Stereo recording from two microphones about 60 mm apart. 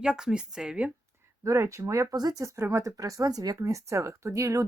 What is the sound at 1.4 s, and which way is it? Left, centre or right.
Speech, right.